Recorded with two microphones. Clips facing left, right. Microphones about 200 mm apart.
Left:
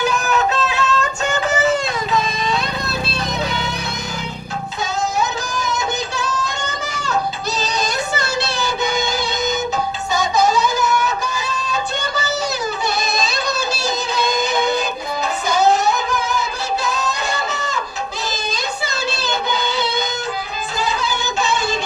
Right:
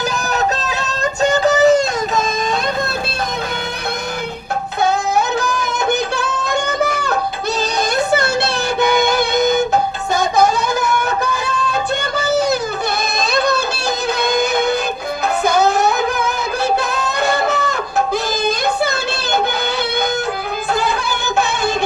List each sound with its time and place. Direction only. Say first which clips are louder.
0.3 s music: left 1 dB; 40° right (ahead or behind)
4.8 s music: right 5 dB; 60° right (ahead or behind)
10.2 s a sound: right 2 dB; 55° right (ahead or behind)
14.2 s music: right 2 dB; 60° right (ahead or behind)
20.7 s music: right 3 dB; 60° right (ahead or behind)